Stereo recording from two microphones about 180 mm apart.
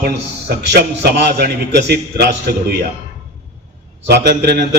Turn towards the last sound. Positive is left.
turn(degrees=-65)  # may be behind; listen again after turning